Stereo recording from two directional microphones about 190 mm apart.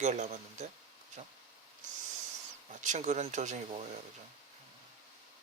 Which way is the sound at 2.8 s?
40° right (ahead or behind).